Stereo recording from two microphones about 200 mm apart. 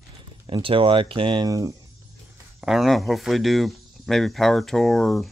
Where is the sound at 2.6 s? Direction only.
Centre (ahead or behind).